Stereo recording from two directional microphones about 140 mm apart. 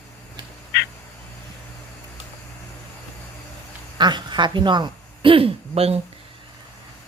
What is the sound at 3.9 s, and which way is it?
Speech, 30° right (ahead or behind).